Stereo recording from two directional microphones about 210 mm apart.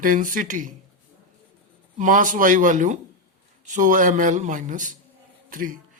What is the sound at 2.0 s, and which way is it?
A man's voice, 40° right (ahead or behind).